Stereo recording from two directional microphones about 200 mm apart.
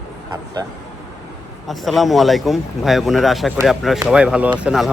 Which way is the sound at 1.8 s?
Centre (ahead or behind).